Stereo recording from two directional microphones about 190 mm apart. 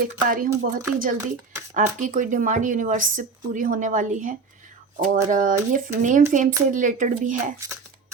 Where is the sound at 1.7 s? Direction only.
45° right (ahead or behind).